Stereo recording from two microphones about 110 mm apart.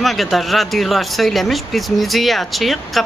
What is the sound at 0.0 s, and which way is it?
Speech, centre (ahead or behind).